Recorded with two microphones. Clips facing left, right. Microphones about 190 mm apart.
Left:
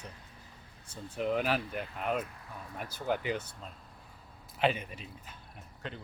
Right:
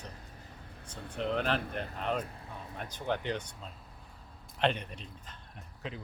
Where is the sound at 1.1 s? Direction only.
5° left (ahead or behind).